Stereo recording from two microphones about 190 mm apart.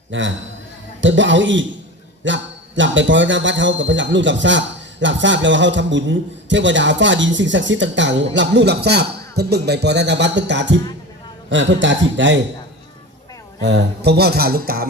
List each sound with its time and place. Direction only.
0.1 s a man's voice: 75° right (ahead or behind)
13.6 s speech: 65° right (ahead or behind)